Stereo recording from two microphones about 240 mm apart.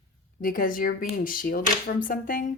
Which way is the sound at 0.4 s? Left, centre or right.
Left.